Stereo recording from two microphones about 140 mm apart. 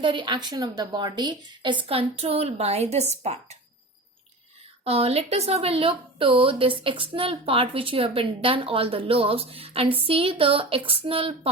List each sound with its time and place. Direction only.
0.0 s speech: 35° right (ahead or behind); by 3.6 s 50° right (ahead or behind)
4.8 s speech: 45° right (ahead or behind)